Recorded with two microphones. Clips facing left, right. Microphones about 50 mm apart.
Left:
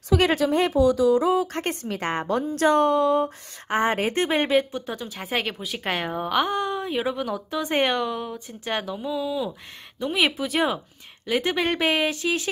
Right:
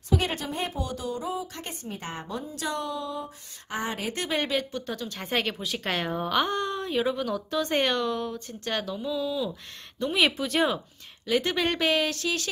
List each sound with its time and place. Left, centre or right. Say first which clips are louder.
0.2 s speech: left 10 dB; left
1.2 s speech: left 10 dB; left
1.5 s speech: left 11 dB; left
1.8 s a woman's voice: left 9 dB; left
3.6 s a woman's voice: left 9 dB; left; by 9.5 s centre
9.9 s a woman's voice: left 1 dB; centre